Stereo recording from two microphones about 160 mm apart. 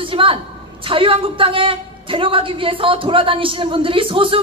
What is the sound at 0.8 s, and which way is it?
A woman's voice, 35° right (ahead or behind).